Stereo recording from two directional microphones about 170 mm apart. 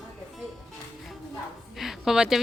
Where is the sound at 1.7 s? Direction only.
Centre (ahead or behind).